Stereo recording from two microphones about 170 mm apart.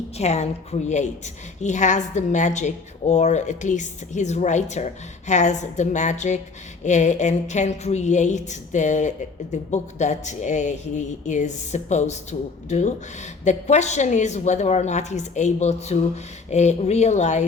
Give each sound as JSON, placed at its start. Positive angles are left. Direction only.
{"t": 0.2, "sound": "a woman's voice", "side_deg": 40}